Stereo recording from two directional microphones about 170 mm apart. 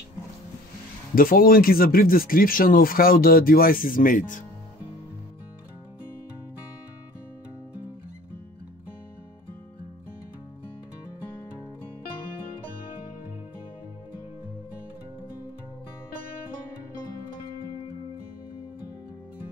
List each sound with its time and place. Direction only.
1.1 s speech: 55° left (ahead or behind)